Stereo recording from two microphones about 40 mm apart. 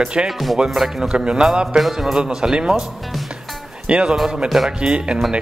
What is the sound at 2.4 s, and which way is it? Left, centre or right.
Speech, centre.